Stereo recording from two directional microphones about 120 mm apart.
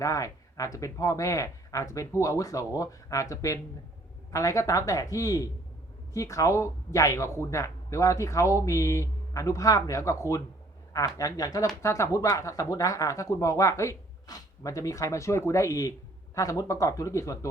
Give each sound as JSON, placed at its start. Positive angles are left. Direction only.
{"t": 0.0, "sound": "speech", "side_deg": 25}